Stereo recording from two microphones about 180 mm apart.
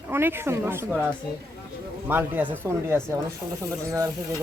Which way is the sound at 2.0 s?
10° right (ahead or behind).